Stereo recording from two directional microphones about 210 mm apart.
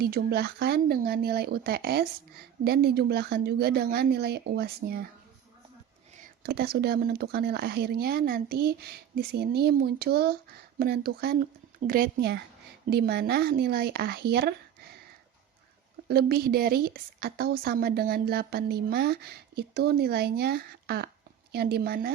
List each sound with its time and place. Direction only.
0.0 s speech: 50° right (ahead or behind)
6.2 s speech: 45° right (ahead or behind)
16.0 s speech: 45° right (ahead or behind)